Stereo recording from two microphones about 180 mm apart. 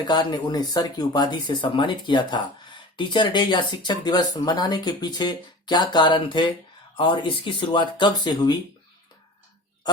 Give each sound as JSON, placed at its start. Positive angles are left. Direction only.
{"t": 0.1, "sound": "speech", "side_deg": 25}